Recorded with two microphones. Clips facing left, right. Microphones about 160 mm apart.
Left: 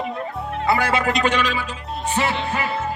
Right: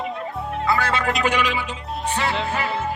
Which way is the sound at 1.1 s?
10° right (ahead or behind).